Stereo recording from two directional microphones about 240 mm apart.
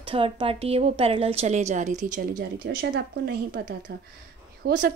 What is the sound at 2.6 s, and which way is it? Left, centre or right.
A woman's voice, right.